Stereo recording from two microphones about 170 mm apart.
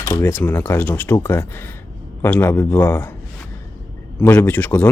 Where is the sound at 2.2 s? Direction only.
15° left (ahead or behind).